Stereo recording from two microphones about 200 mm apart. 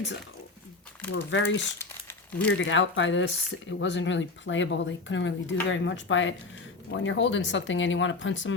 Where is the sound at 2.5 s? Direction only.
70° left (ahead or behind).